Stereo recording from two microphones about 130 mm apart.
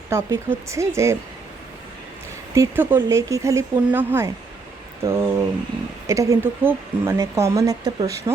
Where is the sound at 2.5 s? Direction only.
15° right (ahead or behind).